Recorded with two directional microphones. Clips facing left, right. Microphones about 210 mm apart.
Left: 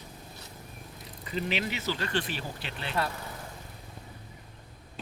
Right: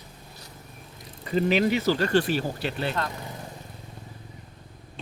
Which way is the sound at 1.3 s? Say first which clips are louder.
Right 10 dB; 45° right (ahead or behind).